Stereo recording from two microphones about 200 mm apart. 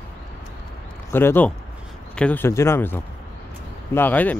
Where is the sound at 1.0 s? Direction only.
10° left (ahead or behind).